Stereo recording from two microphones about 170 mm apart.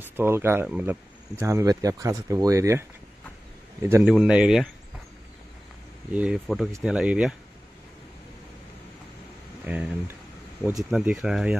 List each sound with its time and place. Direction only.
0.0 s speech: 15° right (ahead or behind)
3.8 s speech: 15° right (ahead or behind)
6.1 s speech: 5° right (ahead or behind)
9.7 s speech: 10° right (ahead or behind)